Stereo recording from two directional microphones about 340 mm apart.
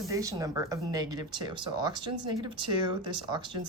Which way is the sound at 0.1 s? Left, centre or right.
Centre.